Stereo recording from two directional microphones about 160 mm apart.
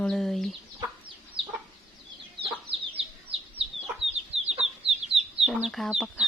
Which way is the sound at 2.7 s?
35° right (ahead or behind).